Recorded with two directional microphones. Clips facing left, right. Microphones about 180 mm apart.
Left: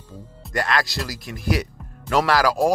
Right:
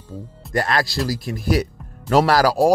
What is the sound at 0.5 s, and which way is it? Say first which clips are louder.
Speech: right 2 dB; 35° right (ahead or behind).